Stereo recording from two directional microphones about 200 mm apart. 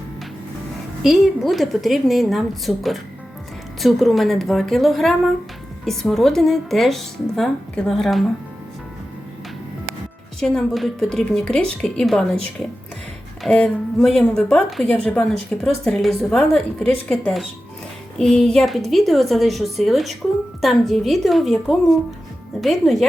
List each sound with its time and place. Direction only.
1.0 s speech: centre (ahead or behind)
10.4 s speech: centre (ahead or behind)